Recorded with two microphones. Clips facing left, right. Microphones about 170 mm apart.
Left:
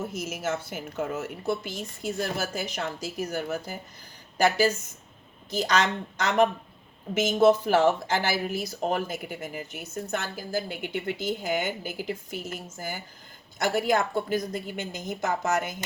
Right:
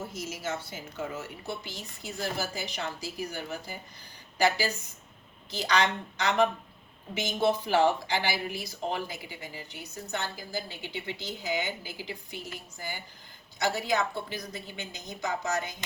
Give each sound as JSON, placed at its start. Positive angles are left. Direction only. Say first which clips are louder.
{"t": 0.1, "sound": "speech", "louder": "left 4 dB", "side_deg": 50}